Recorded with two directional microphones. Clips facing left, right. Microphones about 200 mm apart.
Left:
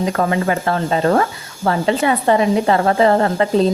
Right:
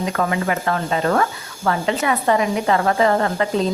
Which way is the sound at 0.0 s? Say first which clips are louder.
Left 4 dB; 35° left (ahead or behind).